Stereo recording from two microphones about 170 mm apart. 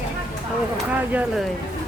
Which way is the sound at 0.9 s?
5° right (ahead or behind).